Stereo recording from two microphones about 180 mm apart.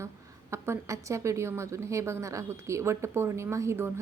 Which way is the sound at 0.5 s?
15° right (ahead or behind).